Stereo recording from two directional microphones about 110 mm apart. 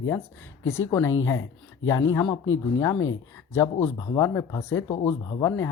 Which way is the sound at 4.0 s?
30° left (ahead or behind).